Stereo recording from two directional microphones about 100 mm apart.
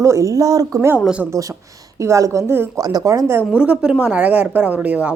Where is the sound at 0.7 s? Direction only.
25° right (ahead or behind).